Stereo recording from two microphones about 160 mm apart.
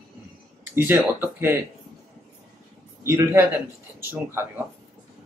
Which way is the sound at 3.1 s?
15° right (ahead or behind).